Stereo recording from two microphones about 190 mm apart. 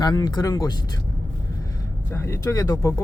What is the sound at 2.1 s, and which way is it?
Speech, 15° left (ahead or behind).